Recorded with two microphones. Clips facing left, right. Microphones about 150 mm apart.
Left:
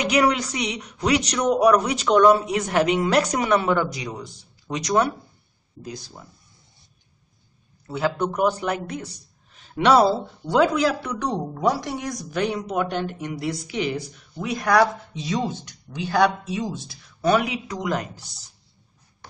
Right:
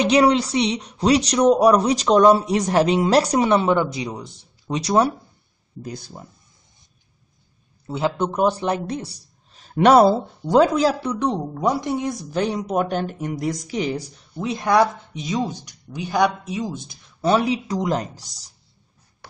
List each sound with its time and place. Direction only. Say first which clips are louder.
0.0 s speech: right 4 dB; 30° right (ahead or behind)
5.8 s speech: right 3 dB; 55° right (ahead or behind)
7.8 s speech: right 1 dB; 20° right (ahead or behind)
12.6 s speech: right 3 dB; 45° right (ahead or behind)